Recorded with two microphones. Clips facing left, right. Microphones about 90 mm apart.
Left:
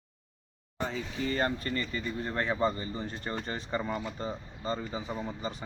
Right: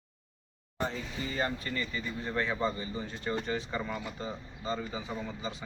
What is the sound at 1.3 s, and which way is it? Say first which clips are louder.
Speech: left 2 dB; 45° left (ahead or behind).